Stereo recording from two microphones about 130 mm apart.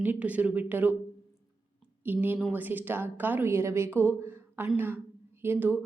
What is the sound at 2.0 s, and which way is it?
Speech, 15° right (ahead or behind).